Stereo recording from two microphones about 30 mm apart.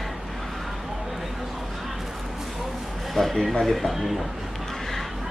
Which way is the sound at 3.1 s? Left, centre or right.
Centre.